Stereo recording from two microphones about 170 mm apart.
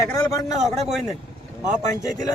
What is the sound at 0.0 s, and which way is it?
Speech, 20° left (ahead or behind).